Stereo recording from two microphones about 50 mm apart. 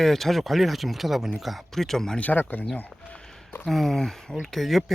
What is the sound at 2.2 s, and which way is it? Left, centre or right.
Speech, left.